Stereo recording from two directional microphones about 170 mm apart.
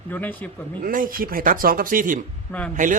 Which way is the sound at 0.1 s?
10° left (ahead or behind).